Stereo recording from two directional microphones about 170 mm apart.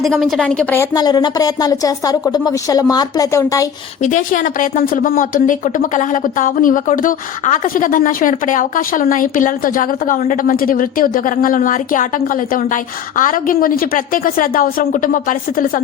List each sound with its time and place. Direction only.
0.0 s speech: centre (ahead or behind)
0.9 s a woman's voice: 25° left (ahead or behind)
4.0 s a woman's voice: 50° left (ahead or behind)